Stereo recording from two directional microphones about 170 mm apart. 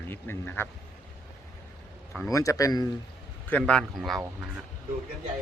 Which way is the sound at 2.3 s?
20° left (ahead or behind).